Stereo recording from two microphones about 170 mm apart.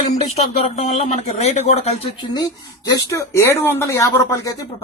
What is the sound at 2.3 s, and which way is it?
Speech, 25° left (ahead or behind).